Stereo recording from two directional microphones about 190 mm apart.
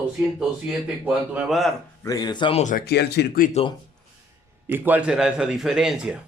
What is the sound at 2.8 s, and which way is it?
Speech, 60° left (ahead or behind).